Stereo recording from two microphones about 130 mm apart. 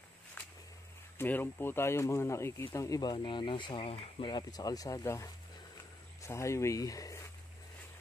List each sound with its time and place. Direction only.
1.1 s speech: 15° left (ahead or behind)